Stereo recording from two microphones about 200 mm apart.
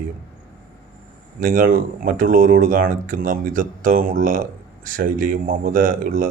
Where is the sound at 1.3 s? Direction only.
45° right (ahead or behind).